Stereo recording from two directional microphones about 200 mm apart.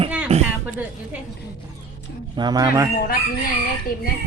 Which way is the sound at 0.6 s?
5° right (ahead or behind).